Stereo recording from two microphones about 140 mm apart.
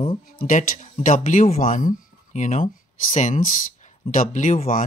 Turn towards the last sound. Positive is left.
turn(degrees=70)  # may be behind; listen again after turning